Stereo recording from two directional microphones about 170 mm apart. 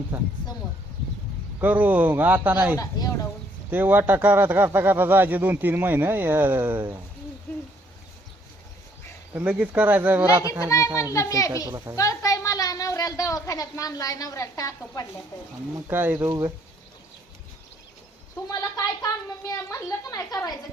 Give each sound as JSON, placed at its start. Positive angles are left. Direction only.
{"t": 0.1, "sound": "speech", "side_deg": -10}
{"t": 1.6, "sound": "speech", "side_deg": -10}
{"t": 2.7, "sound": "speech", "side_deg": 20}
{"t": 3.7, "sound": "speech", "side_deg": -10}
{"t": 9.3, "sound": "speech", "side_deg": -10}
{"t": 10.7, "sound": "a woman's voice", "side_deg": 20}
{"t": 15.9, "sound": "speech", "side_deg": -10}
{"t": 18.4, "sound": "a sound", "side_deg": 20}
{"t": 19.6, "sound": "speech", "side_deg": 15}